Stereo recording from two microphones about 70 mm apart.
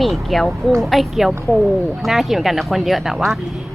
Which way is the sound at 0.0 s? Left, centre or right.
Centre.